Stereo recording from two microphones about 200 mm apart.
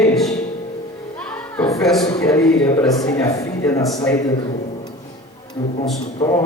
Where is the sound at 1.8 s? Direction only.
Centre (ahead or behind); by 4.2 s 15° left (ahead or behind).